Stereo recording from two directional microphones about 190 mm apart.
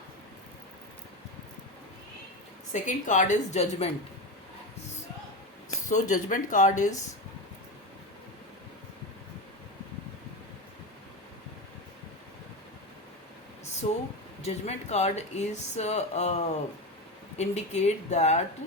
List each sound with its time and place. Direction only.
2.8 s speech: 40° left (ahead or behind)
5.7 s speech: 40° left (ahead or behind)
13.8 s speech: 35° left (ahead or behind)